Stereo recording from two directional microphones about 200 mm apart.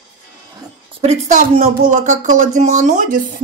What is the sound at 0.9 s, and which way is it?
Speech, 35° right (ahead or behind).